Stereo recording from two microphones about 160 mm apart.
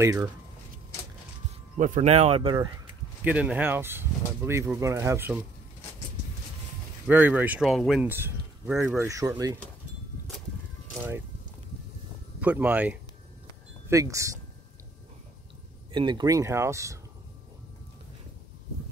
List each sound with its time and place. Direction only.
0.0 s speech: 20° right (ahead or behind)
1.8 s speech: 45° right (ahead or behind)
3.3 s speech: 10° right (ahead or behind)
7.1 s speech: 10° right (ahead or behind)
12.4 s speech: 10° right (ahead or behind)
13.8 s speech: 20° right (ahead or behind)
15.9 s speech: 30° right (ahead or behind)